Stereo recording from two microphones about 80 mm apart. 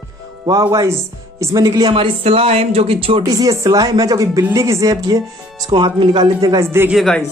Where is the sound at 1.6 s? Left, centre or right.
Right.